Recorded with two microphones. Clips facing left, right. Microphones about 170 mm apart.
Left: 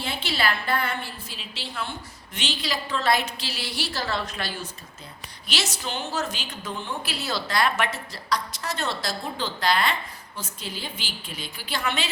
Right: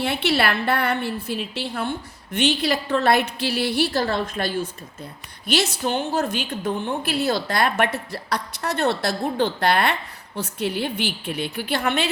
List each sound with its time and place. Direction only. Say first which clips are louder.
0.0 s a woman's voice: right 6 dB; 65° right (ahead or behind)